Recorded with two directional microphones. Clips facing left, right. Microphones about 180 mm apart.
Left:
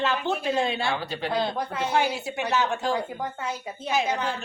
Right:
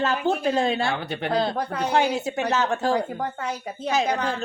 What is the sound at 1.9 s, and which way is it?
Speech, 45° right (ahead or behind).